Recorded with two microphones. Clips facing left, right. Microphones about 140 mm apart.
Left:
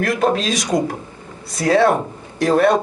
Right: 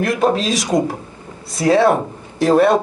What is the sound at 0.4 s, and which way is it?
Speech, centre (ahead or behind).